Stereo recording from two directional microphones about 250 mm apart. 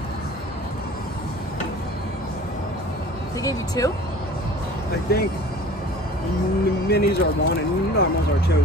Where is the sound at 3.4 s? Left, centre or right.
Centre.